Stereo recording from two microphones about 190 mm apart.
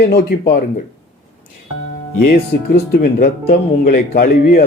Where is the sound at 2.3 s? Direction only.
55° left (ahead or behind).